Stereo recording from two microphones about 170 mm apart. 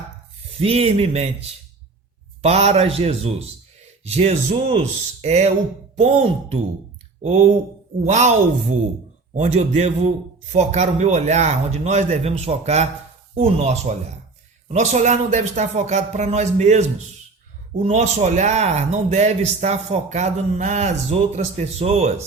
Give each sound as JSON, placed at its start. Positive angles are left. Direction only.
{"t": 0.6, "sound": "speech", "side_deg": -35}
{"t": 9.3, "sound": "speech", "side_deg": -40}